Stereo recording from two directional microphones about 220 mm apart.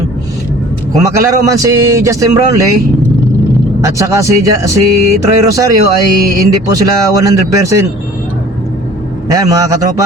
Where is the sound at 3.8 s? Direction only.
15° right (ahead or behind).